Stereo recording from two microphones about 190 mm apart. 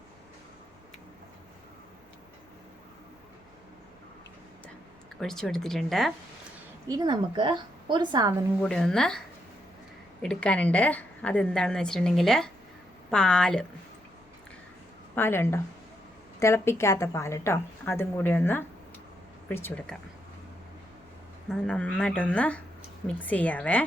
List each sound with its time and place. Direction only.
5.2 s a woman's voice: centre (ahead or behind)
6.8 s a woman's voice: 20° right (ahead or behind)
8.6 s a woman's voice: 5° left (ahead or behind)
15.1 s a woman's voice: 10° left (ahead or behind)
21.5 s a woman's voice: 5° left (ahead or behind)